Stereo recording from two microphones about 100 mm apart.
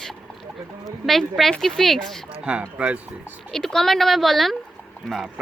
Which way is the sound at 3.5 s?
5° left (ahead or behind).